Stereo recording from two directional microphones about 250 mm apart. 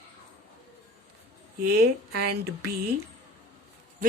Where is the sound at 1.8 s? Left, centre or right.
Right.